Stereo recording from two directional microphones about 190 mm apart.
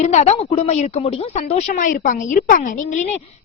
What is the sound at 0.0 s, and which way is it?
A woman's voice, 35° left (ahead or behind).